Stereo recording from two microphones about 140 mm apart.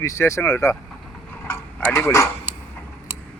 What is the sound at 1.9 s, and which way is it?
Speech, 20° left (ahead or behind).